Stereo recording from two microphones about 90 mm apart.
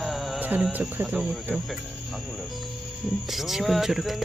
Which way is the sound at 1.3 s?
Centre (ahead or behind).